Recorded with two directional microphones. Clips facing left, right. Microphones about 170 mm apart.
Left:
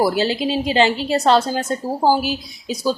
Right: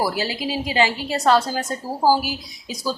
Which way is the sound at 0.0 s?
25° left (ahead or behind).